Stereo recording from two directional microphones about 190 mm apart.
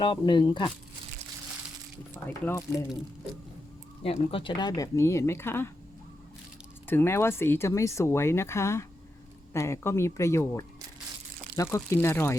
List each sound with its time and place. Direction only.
0.0 s speech: 25° left (ahead or behind)
2.2 s speech: 10° left (ahead or behind)
4.0 s speech: 30° left (ahead or behind); by 5.7 s 10° left (ahead or behind)
6.8 s speech: 10° left (ahead or behind)